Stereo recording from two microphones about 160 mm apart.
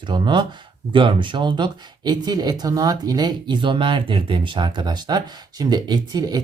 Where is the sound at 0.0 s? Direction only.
30° right (ahead or behind).